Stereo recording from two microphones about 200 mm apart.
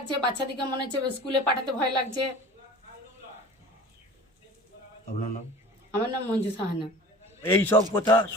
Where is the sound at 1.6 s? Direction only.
20° right (ahead or behind).